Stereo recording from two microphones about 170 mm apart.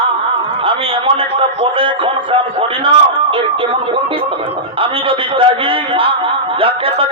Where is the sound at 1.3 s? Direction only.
30° right (ahead or behind).